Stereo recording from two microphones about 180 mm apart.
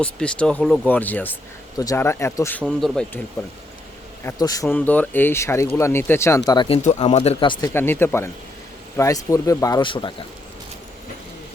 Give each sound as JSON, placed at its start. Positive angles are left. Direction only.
{"t": 0.0, "sound": "speech", "side_deg": 5}
{"t": 4.2, "sound": "speech", "side_deg": 15}
{"t": 6.7, "sound": "speech", "side_deg": 35}
{"t": 7.7, "sound": "speech", "side_deg": 10}